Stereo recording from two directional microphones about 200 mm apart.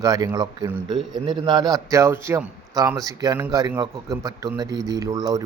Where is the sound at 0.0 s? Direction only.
20° right (ahead or behind).